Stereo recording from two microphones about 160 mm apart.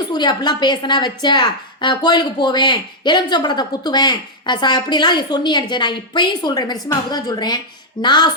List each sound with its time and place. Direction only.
0.1 s a woman's voice: 25° left (ahead or behind)